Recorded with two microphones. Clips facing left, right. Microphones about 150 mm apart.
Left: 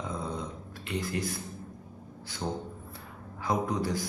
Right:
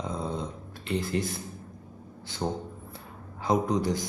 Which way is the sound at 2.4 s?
30° right (ahead or behind).